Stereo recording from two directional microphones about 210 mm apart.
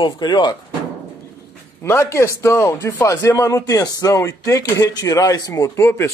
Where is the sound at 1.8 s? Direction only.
15° left (ahead or behind).